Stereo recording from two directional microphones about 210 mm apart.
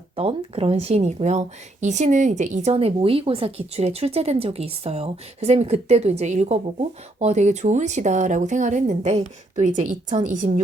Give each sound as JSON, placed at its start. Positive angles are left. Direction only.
{"t": 0.2, "sound": "speech", "side_deg": -30}